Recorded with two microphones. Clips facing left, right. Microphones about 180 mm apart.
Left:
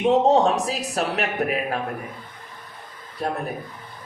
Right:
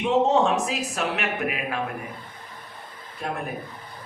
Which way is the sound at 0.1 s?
35° left (ahead or behind).